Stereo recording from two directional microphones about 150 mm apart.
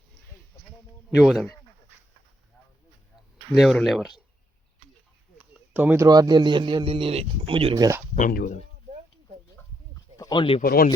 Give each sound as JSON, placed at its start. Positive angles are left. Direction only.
{"t": 1.1, "sound": "speech", "side_deg": 0}
{"t": 3.5, "sound": "speech", "side_deg": 0}
{"t": 5.7, "sound": "speech", "side_deg": -10}
{"t": 6.1, "sound": "speech", "side_deg": -25}
{"t": 7.8, "sound": "speech", "side_deg": -20}
{"t": 8.3, "sound": "speech", "side_deg": 80}
{"t": 9.6, "sound": "a sound", "side_deg": 20}
{"t": 10.2, "sound": "speech", "side_deg": 30}
{"t": 10.6, "sound": "speech", "side_deg": 85}